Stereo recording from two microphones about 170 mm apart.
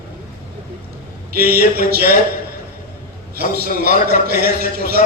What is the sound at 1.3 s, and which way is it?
Speech, 65° right (ahead or behind).